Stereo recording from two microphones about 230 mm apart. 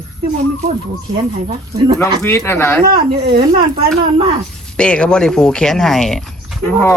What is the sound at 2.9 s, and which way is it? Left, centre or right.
Speech, right.